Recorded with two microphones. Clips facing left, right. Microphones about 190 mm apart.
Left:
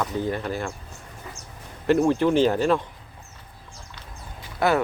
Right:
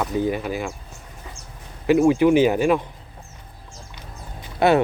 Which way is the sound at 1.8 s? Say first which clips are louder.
Right 4 dB; 10° right (ahead or behind).